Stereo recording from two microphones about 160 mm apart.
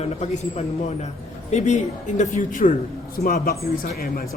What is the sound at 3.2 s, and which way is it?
Speech, 70° left (ahead or behind).